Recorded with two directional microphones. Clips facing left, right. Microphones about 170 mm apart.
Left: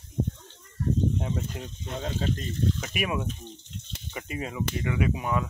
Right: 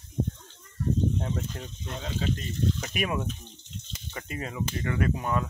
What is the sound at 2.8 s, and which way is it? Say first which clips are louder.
Speech: even; 5° left (ahead or behind).